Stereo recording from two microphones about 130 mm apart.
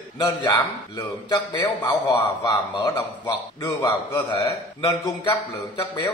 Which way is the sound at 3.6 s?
25° left (ahead or behind).